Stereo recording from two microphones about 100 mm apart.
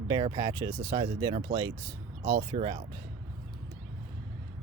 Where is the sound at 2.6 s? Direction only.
65° right (ahead or behind).